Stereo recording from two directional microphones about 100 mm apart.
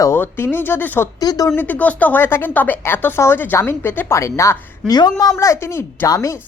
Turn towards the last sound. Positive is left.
turn(degrees=35)  # may be behind; listen again after turning